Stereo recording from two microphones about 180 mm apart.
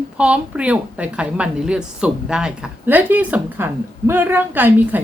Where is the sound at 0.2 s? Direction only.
5° right (ahead or behind).